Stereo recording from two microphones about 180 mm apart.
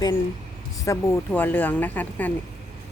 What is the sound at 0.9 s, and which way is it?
Speech, 15° left (ahead or behind).